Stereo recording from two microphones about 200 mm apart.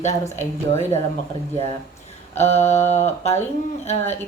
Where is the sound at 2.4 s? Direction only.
35° left (ahead or behind).